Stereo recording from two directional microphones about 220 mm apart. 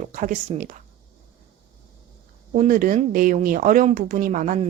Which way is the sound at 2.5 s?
35° right (ahead or behind).